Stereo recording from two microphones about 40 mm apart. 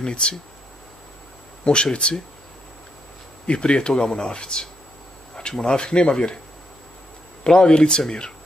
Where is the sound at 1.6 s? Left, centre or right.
Left.